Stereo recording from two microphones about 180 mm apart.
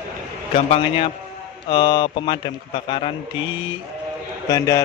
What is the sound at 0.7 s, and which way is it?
A man's voice, 30° left (ahead or behind).